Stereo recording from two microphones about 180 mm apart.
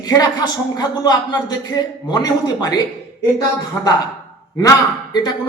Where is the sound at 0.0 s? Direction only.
20° left (ahead or behind).